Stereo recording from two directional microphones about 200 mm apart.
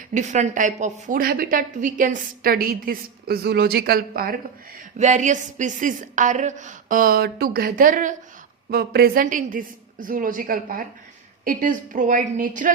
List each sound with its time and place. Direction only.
0.1 s a woman's voice: 35° right (ahead or behind)
4.9 s a woman's voice: 35° right (ahead or behind)